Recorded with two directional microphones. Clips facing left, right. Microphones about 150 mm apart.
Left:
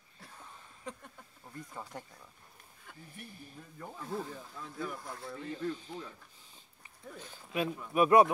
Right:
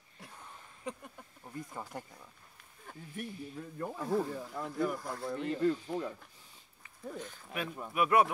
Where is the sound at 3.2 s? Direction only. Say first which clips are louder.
Right 10 dB; 65° right (ahead or behind).